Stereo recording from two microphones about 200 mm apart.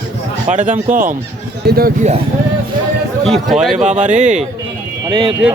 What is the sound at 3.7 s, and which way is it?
Speech, 35° right (ahead or behind).